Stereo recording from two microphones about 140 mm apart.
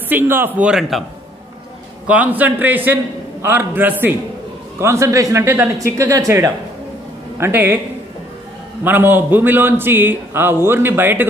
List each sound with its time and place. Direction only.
0.1 s a man's voice: 15° right (ahead or behind)
0.6 s a man's voice: 5° right (ahead or behind)
2.0 s a man's voice: 10° right (ahead or behind)
8.8 s a man's voice: 15° right (ahead or behind)